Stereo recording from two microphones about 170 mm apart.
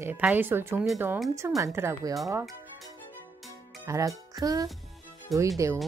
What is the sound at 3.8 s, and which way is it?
Speech, 20° right (ahead or behind).